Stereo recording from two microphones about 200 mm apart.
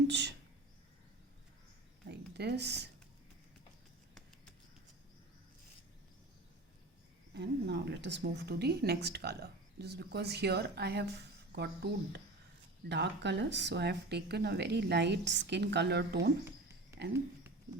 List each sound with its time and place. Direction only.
0.1 s speech: 60° right (ahead or behind)
2.0 s a sound: 55° right (ahead or behind)
7.3 s speech: 60° right (ahead or behind)